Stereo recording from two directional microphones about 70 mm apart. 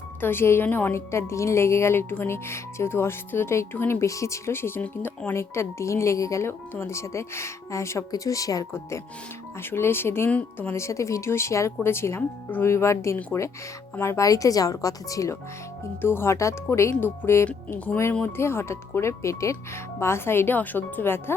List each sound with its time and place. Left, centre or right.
0.2 s speech: left
4.1 s speech: left
5.3 s speech: left
9.6 s speech: left
10.2 s speech: left
10.7 s speech: left
16.0 s speech: left